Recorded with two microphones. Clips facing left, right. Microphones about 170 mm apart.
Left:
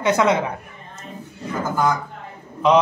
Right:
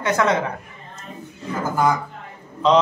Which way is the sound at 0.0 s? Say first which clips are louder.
Left 2 dB; 20° left (ahead or behind).